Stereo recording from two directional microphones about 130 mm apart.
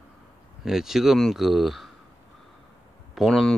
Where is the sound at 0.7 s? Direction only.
5° right (ahead or behind).